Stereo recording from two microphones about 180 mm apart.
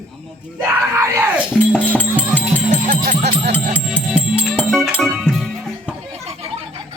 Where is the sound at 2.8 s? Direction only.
45° right (ahead or behind).